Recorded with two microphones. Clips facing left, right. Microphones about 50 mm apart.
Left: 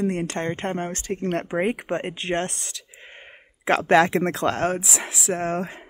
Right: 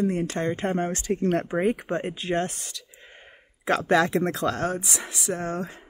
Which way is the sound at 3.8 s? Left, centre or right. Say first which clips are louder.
Left 4 dB; left.